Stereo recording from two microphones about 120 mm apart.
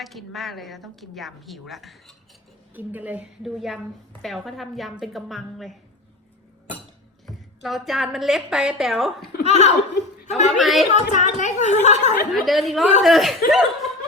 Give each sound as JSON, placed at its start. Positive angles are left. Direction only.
{"t": 0.0, "sound": "a woman's voice", "side_deg": 0}
{"t": 2.7, "sound": "a woman's voice", "side_deg": -15}
{"t": 3.4, "sound": "a woman's voice", "side_deg": 0}
{"t": 7.3, "sound": "a woman's voice", "side_deg": 0}
{"t": 9.4, "sound": "laughter", "side_deg": 70}
{"t": 10.2, "sound": "a woman's voice", "side_deg": 75}
{"t": 10.6, "sound": "a woman's voice", "side_deg": 0}
{"t": 10.9, "sound": "a woman's voice", "side_deg": 90}
{"t": 12.3, "sound": "a woman's voice", "side_deg": 0}